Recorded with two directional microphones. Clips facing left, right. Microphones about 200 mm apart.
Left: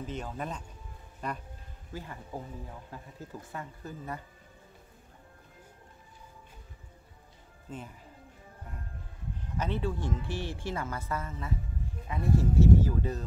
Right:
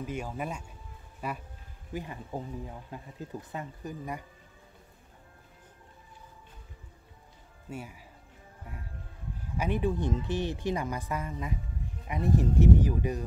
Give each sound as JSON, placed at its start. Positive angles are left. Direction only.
{"t": 0.0, "sound": "speech", "side_deg": -10}
{"t": 7.7, "sound": "speech", "side_deg": -10}
{"t": 9.6, "sound": "speech", "side_deg": -15}